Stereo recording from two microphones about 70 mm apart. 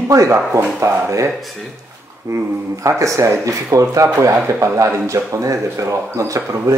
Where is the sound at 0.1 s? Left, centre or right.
Right.